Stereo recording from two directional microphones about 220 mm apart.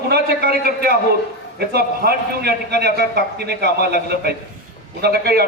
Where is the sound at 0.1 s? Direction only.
45° right (ahead or behind).